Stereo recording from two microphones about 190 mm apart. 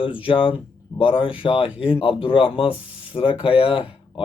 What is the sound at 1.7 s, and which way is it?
Speech, 5° right (ahead or behind).